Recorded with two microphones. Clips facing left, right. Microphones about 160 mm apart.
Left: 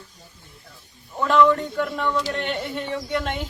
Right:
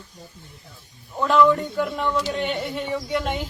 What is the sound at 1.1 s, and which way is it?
A man's voice, 5° right (ahead or behind).